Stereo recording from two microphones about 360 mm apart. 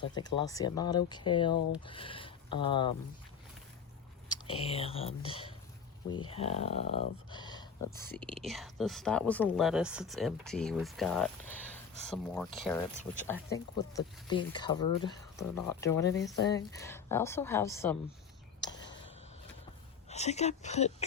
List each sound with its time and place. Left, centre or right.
0.3 s speech: centre
4.3 s speech: centre
20.1 s speech: centre